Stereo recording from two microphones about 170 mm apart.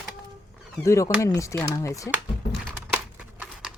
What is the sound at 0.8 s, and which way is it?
Speech, 15° left (ahead or behind).